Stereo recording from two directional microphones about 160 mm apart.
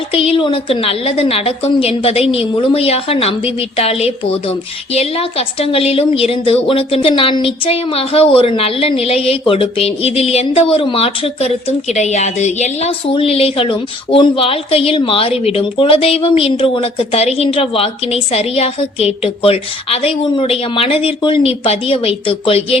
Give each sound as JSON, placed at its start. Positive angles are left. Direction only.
{"t": 0.1, "sound": "a woman's voice", "side_deg": 35}